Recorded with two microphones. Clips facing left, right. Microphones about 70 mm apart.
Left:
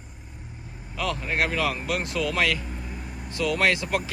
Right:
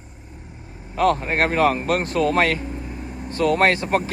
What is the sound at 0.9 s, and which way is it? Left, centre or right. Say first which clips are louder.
Speech: right 8 dB; right.